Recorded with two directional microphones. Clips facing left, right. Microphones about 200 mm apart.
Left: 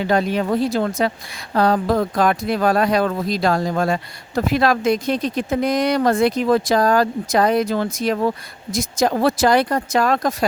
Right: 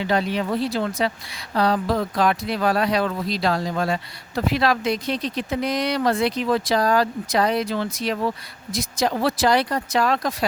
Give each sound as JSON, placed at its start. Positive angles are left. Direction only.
{"t": 0.0, "sound": "speech", "side_deg": 45}